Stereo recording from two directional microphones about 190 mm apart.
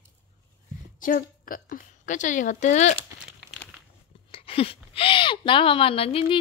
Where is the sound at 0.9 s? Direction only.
45° left (ahead or behind).